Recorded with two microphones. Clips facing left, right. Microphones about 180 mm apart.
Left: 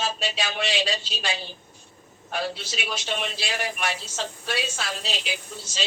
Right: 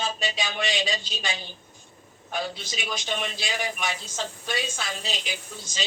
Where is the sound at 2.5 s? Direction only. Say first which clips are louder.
Left 2 dB; 65° left (ahead or behind).